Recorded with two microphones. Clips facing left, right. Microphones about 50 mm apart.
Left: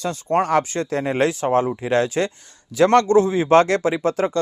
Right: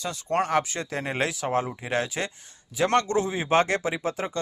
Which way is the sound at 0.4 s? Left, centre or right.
Left.